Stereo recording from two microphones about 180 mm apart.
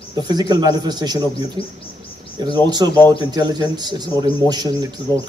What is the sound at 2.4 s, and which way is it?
A man's voice, 25° right (ahead or behind).